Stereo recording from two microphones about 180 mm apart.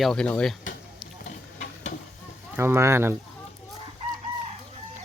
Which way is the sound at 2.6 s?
15° right (ahead or behind).